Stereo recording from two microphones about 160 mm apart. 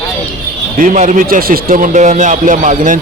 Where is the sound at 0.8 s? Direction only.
50° right (ahead or behind).